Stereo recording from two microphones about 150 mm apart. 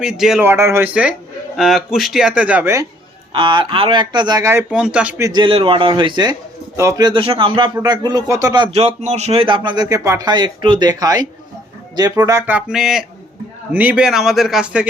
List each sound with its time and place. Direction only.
0.0 s speech: 5° right (ahead or behind)
0.4 s a man's voice: 15° right (ahead or behind)
1.5 s speech: centre (ahead or behind)
3.3 s speech: 35° right (ahead or behind)
4.7 s a man's voice: 5° right (ahead or behind)
5.2 s speech: 30° right (ahead or behind)
6.7 s speech: 20° right (ahead or behind)
7.1 s speech: 35° right (ahead or behind)
8.7 s a man's voice: 45° right (ahead or behind); by 14.8 s 5° right (ahead or behind)